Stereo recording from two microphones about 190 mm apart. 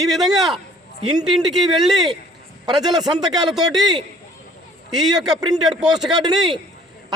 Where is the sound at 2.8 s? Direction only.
20° right (ahead or behind).